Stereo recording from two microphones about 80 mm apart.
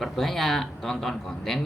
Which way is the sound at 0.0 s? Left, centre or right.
Centre.